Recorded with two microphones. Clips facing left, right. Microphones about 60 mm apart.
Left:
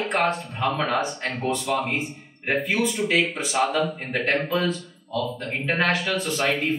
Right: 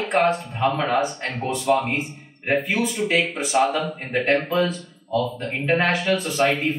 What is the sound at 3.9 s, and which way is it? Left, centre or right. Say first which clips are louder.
Speech: right 3 dB; right.